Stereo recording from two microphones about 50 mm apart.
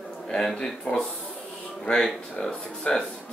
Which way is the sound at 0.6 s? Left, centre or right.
Centre.